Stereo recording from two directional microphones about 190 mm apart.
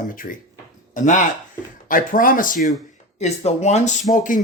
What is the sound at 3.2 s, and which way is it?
Speech, 35° left (ahead or behind).